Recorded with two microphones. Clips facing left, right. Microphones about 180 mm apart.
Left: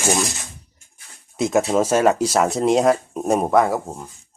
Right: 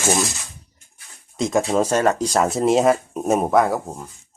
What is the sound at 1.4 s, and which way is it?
Speech, centre (ahead or behind).